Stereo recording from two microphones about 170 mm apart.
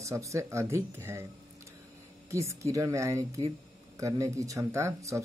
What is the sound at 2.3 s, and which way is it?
Speech, 20° right (ahead or behind).